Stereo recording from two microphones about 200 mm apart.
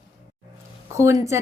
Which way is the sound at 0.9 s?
15° right (ahead or behind).